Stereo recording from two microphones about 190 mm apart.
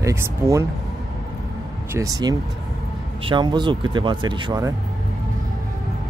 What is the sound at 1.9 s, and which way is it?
Speech, 20° right (ahead or behind).